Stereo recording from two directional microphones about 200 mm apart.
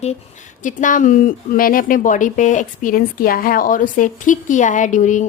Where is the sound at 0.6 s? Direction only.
40° left (ahead or behind).